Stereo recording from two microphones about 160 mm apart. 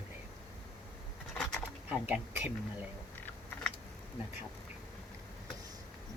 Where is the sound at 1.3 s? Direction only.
5° left (ahead or behind).